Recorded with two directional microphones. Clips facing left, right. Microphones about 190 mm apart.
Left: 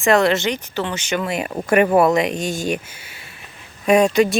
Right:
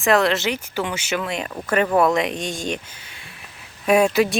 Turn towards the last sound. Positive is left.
turn(degrees=-5)  # may be behind; listen again after turning